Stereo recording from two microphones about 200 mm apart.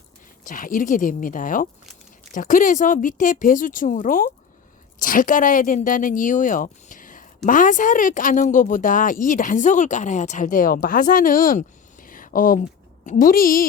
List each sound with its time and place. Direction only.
0.4 s a woman's voice: 40° left (ahead or behind)